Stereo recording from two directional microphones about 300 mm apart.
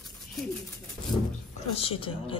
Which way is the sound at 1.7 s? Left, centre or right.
Centre.